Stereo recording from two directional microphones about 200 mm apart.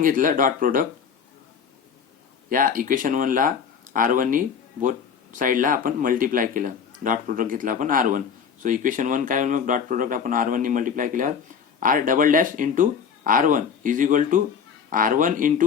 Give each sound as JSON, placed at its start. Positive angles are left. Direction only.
{"t": 0.0, "sound": "speech", "side_deg": -40}
{"t": 2.5, "sound": "speech", "side_deg": -45}